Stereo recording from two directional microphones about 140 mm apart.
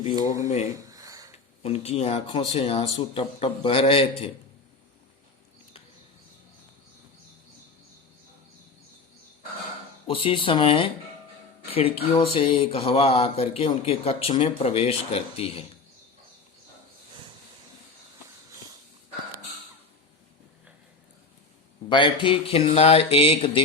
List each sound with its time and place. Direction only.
0.4 s speech: 55° left (ahead or behind)
0.8 s a sound: 25° right (ahead or behind)
1.6 s speech: 45° left (ahead or behind)
10.1 s speech: 40° left (ahead or behind)
21.8 s speech: 35° left (ahead or behind)